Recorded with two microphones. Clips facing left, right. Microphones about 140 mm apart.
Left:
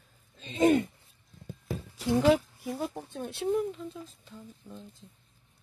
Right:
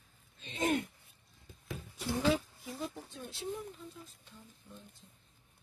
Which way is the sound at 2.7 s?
60° left (ahead or behind).